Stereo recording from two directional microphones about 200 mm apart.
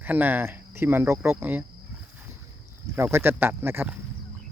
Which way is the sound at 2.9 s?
10° right (ahead or behind).